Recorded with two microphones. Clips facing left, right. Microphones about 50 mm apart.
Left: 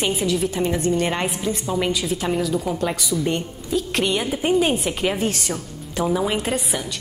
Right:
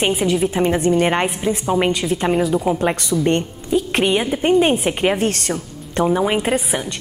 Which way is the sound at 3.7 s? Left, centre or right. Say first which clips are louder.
Right 5 dB; right.